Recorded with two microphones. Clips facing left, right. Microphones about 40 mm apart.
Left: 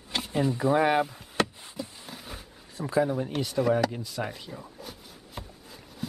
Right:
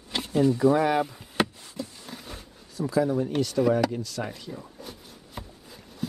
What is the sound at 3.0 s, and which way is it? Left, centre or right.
Speech, centre.